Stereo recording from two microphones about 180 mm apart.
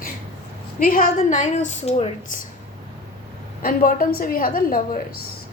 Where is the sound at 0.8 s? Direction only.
50° left (ahead or behind).